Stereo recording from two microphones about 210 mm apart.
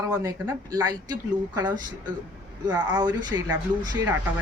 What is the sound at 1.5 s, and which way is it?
Speech, 20° right (ahead or behind).